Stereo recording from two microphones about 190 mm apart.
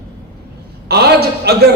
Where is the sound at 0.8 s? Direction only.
55° right (ahead or behind).